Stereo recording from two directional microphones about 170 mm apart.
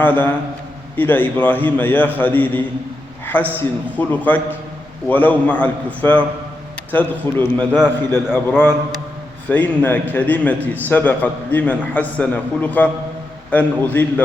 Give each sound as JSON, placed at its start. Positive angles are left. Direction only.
{"t": 0.0, "sound": "a man's voice", "side_deg": 10}
{"t": 3.5, "sound": "a man's voice", "side_deg": 10}